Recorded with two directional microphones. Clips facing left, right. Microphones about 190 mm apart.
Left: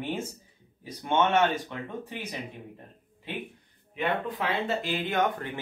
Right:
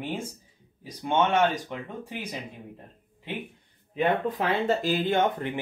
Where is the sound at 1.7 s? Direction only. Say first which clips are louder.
Right 1 dB; 15° right (ahead or behind).